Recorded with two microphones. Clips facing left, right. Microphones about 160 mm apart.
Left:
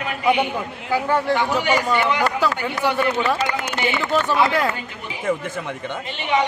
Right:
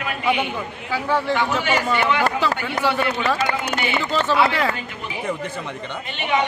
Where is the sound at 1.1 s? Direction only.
15° left (ahead or behind).